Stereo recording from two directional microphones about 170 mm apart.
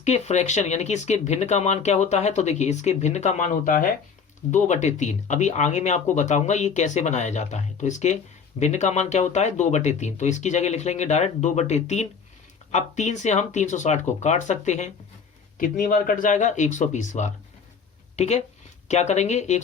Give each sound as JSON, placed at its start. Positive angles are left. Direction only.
{"t": 0.0, "sound": "speech", "side_deg": 40}